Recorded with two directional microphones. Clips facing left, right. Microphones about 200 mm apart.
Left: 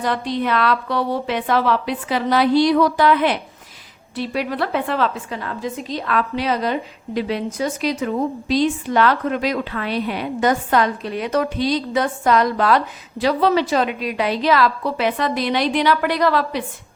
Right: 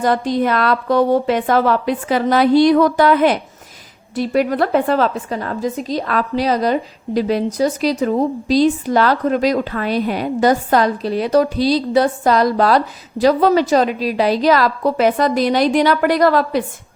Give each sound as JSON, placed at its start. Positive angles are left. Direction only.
{"t": 0.0, "sound": "a woman's voice", "side_deg": -45}